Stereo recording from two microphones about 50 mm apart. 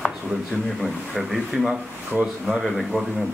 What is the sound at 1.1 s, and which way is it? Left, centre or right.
Speech, centre.